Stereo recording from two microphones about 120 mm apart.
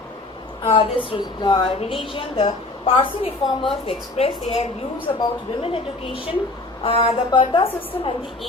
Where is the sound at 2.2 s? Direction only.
50° left (ahead or behind).